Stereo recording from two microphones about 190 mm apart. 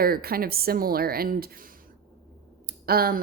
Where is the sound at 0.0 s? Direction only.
50° right (ahead or behind).